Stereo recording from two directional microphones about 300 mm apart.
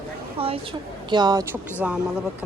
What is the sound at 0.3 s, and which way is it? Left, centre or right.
A woman's voice, centre.